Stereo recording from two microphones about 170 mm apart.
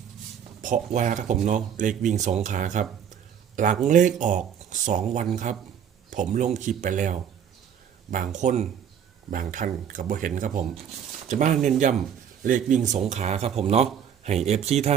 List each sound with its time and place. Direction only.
0.6 s speech: 50° right (ahead or behind)